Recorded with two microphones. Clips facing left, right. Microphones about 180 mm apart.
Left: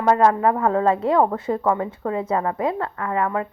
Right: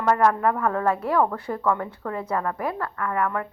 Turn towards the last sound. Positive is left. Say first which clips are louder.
# left 3 dB
turn(degrees=20)  # may be behind; listen again after turning